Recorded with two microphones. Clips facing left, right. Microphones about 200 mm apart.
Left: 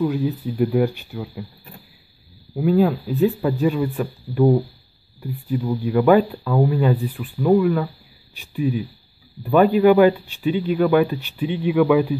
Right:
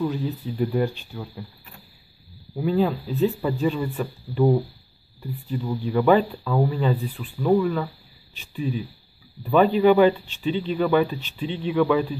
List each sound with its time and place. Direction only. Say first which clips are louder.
0.0 s speech: left 5 dB; 5° left (ahead or behind)
2.5 s speech: left 4 dB; 5° left (ahead or behind)